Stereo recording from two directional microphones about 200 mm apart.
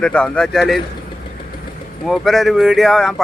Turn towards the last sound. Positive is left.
turn(degrees=0)  # may be behind; listen again after turning